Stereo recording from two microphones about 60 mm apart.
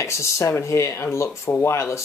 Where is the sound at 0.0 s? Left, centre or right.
Left.